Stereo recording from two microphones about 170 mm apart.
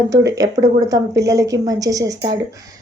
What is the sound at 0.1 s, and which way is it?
A woman's voice, 20° right (ahead or behind).